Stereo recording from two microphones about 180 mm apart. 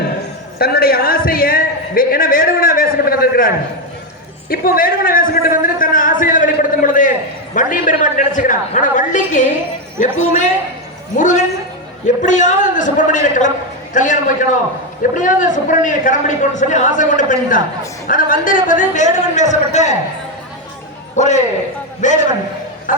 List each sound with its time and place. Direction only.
0.6 s a man's voice: 60° left (ahead or behind)
11.2 s a man's voice: 45° left (ahead or behind)
21.2 s a man's voice: 40° left (ahead or behind)